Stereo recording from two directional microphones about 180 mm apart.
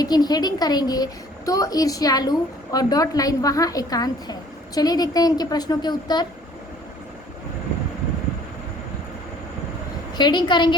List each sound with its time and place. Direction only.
0.0 s a woman's voice: 20° left (ahead or behind)
10.2 s a woman's voice: 25° left (ahead or behind)